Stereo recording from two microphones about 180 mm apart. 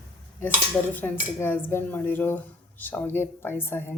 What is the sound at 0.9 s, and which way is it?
Speech, 10° left (ahead or behind).